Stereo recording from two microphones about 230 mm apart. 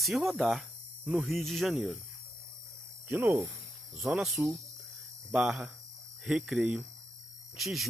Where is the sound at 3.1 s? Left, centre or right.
Centre.